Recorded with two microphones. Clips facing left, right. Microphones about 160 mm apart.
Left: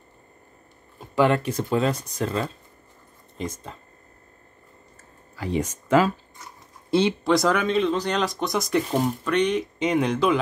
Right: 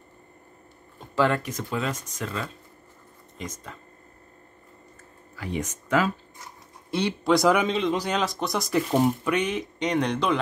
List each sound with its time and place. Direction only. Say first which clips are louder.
0.9 s a sound: left 3 dB; 15° left (ahead or behind)
1.4 s speech: left 6 dB; 35° left (ahead or behind)
5.4 s speech: left 5 dB; 30° left (ahead or behind)
7.2 s speech: even; centre (ahead or behind)